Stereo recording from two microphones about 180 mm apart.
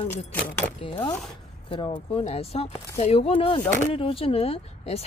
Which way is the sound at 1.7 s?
30° left (ahead or behind).